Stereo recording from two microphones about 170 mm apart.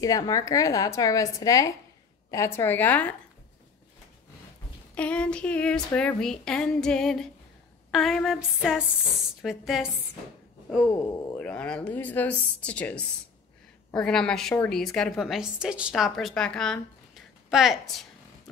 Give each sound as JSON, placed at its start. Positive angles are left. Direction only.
{"t": 0.0, "sound": "a woman's voice", "side_deg": 20}
{"t": 4.9, "sound": "a woman's voice", "side_deg": 5}
{"t": 11.3, "sound": "a woman's voice", "side_deg": 5}